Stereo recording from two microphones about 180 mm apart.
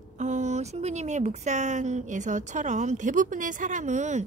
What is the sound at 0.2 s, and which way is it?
Speech, 40° right (ahead or behind).